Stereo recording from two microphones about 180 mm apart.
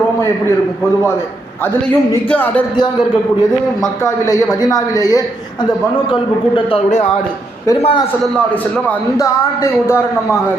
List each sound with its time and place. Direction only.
4.0 s a woman's voice: 20° left (ahead or behind)
7.8 s a man's voice: 30° left (ahead or behind)
8.9 s a man's voice: 15° left (ahead or behind)